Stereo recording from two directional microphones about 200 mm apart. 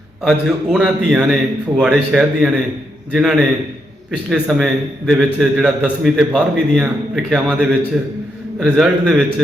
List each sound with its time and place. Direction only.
0.3 s a man's voice: 5° right (ahead or behind)